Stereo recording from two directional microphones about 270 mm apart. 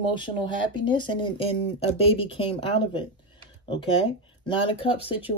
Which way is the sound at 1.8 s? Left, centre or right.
Left.